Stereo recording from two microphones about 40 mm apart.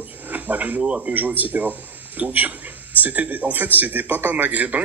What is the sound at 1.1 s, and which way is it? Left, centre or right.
Speech, right.